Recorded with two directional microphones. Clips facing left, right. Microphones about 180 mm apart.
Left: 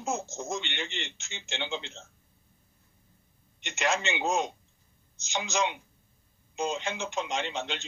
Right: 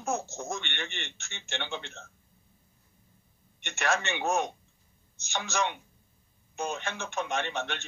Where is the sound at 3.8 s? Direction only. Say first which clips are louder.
Left 1 dB; 20° left (ahead or behind).